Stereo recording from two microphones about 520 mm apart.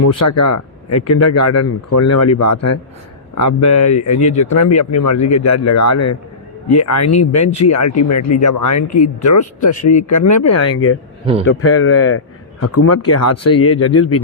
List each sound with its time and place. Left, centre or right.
0.0 s a man's voice: left